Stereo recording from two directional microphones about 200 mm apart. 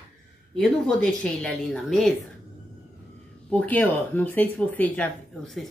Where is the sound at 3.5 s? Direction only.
5° left (ahead or behind).